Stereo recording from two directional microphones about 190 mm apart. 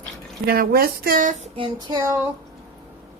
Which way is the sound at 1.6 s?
25° right (ahead or behind).